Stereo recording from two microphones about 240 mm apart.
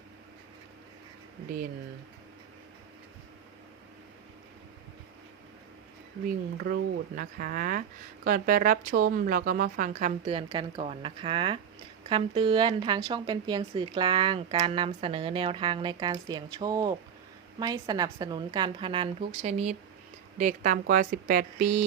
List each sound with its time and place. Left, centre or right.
6.2 s a woman's voice: right